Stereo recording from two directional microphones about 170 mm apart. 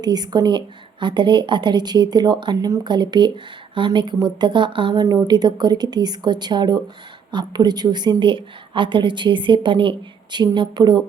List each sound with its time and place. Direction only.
0.0 s a woman's voice: 25° right (ahead or behind)